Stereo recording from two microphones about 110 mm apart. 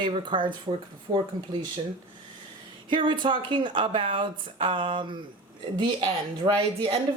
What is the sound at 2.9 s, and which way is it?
Speech, 45° right (ahead or behind).